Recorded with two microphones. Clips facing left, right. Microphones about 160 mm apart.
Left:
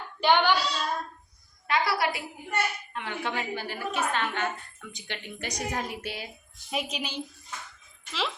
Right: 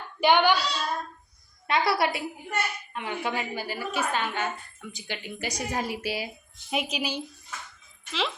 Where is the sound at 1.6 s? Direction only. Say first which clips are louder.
Right 2 dB; 25° right (ahead or behind).